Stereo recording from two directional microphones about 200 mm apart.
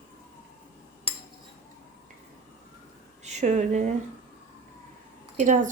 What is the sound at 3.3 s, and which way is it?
Speech, 35° right (ahead or behind).